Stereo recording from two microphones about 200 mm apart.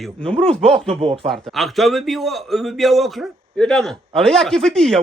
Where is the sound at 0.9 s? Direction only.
30° right (ahead or behind).